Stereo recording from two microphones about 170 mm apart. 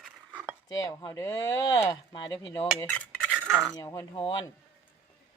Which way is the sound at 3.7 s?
20° left (ahead or behind).